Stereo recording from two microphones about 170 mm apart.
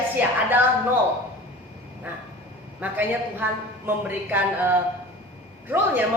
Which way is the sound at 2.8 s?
10° right (ahead or behind).